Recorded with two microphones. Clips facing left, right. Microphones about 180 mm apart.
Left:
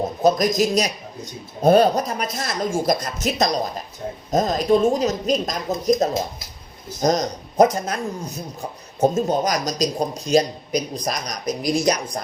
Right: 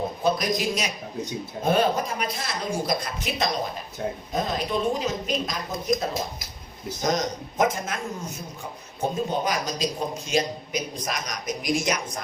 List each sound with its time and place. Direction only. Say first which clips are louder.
0.2 s a man's voice: left 8 dB; 45° left (ahead or behind)
9.0 s a man's voice: left 7 dB; 45° left (ahead or behind)